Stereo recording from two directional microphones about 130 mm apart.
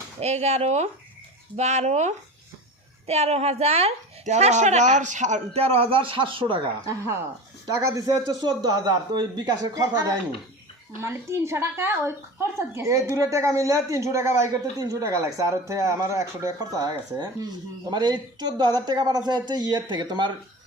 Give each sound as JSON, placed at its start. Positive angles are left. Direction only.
{"t": 0.2, "sound": "speech", "side_deg": -55}
{"t": 6.8, "sound": "a woman's voice", "side_deg": -20}